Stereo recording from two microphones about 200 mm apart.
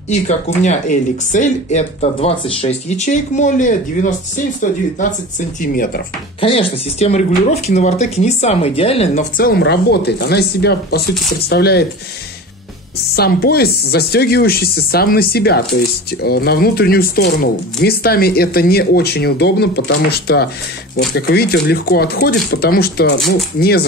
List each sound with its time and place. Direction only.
0.1 s speech: 35° left (ahead or behind)
5.6 s speech: 45° left (ahead or behind)
6.4 s speech: 30° left (ahead or behind); by 11.8 s 55° left (ahead or behind)
13.1 s speech: 50° left (ahead or behind)